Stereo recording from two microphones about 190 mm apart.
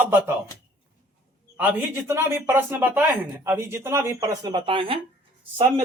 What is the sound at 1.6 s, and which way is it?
Speech, 10° right (ahead or behind).